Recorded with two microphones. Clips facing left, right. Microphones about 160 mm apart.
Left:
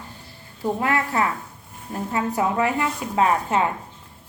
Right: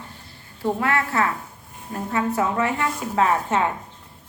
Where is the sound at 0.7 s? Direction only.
20° left (ahead or behind).